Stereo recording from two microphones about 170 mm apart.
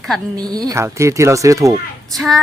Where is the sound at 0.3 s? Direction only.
20° right (ahead or behind).